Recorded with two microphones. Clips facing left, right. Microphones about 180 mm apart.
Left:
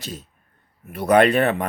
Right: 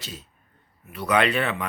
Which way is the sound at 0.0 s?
45° left (ahead or behind).